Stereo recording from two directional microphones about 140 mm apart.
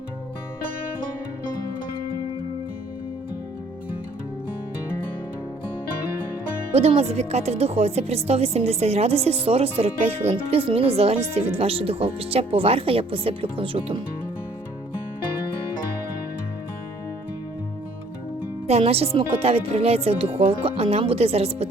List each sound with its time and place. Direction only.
6.7 s speech: 45° right (ahead or behind)
18.7 s speech: 45° right (ahead or behind)